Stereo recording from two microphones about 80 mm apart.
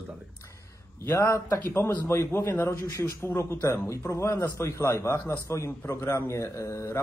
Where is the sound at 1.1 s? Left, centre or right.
Left.